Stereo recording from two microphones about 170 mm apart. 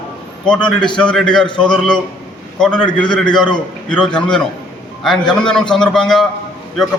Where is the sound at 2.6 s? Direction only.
5° left (ahead or behind).